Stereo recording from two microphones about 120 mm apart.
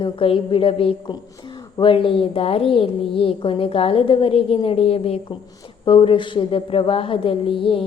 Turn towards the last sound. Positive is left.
turn(degrees=50)  # may be behind; listen again after turning